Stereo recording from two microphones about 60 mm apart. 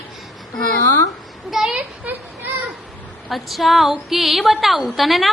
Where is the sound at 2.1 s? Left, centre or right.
Right.